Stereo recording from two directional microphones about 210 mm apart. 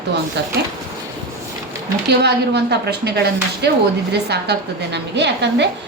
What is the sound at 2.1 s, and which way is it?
A woman's voice, 55° right (ahead or behind).